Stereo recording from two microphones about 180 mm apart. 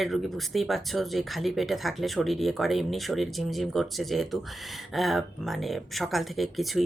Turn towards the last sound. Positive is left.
turn(degrees=0)  # may be behind; listen again after turning